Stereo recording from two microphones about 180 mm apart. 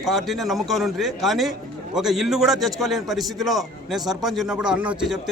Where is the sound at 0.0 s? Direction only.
Centre (ahead or behind).